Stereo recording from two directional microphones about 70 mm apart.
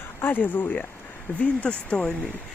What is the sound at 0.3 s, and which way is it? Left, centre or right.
Speech, left.